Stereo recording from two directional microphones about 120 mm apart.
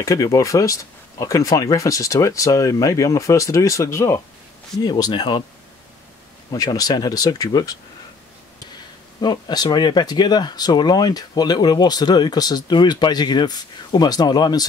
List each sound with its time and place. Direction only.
0.0 s speech: 30° left (ahead or behind)
4.8 s speech: 35° left (ahead or behind)
6.5 s speech: 30° left (ahead or behind)
9.2 s speech: 35° left (ahead or behind)